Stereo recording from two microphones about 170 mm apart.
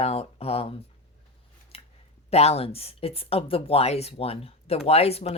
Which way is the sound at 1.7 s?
35° left (ahead or behind).